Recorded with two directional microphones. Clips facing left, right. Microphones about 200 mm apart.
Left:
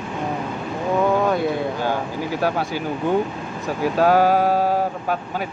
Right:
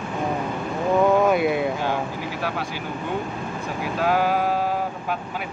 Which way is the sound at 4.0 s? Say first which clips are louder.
Left 5 dB; 35° left (ahead or behind).